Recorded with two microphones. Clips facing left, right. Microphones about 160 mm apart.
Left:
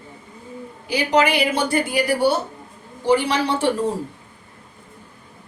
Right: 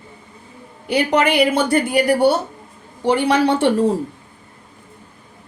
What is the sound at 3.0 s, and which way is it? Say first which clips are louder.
Speech: right 3 dB; 60° right (ahead or behind).